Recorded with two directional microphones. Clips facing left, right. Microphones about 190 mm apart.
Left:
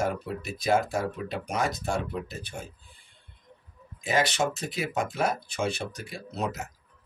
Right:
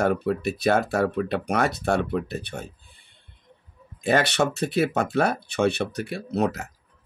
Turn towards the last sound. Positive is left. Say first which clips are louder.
# right 7 dB
turn(degrees=-65)  # may be behind; listen again after turning